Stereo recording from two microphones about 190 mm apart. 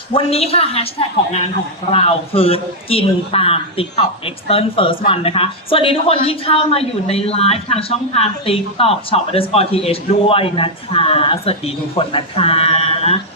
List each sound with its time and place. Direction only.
0.1 s a woman's voice: 30° left (ahead or behind)